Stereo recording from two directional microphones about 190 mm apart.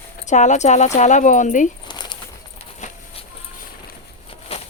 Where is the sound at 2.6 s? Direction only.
35° left (ahead or behind).